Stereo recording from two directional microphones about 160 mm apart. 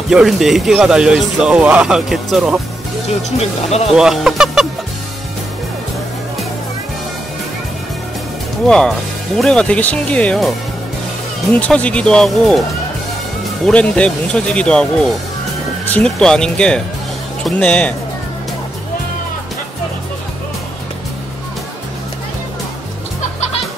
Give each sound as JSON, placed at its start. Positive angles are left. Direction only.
{"t": 0.1, "sound": "speech", "side_deg": 0}
{"t": 3.2, "sound": "speech", "side_deg": 40}
{"t": 3.9, "sound": "speech", "side_deg": -5}
{"t": 8.6, "sound": "speech", "side_deg": 5}
{"t": 11.5, "sound": "speech", "side_deg": 10}
{"t": 13.7, "sound": "speech", "side_deg": 5}